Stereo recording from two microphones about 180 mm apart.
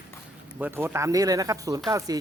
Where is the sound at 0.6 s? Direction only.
15° right (ahead or behind).